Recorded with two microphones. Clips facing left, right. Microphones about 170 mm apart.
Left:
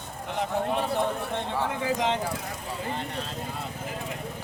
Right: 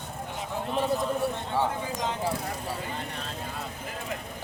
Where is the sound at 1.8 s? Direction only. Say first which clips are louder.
Left 5 dB; 90° left.